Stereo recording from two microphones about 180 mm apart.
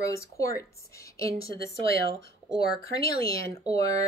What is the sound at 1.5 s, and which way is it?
Speech, 60° left (ahead or behind).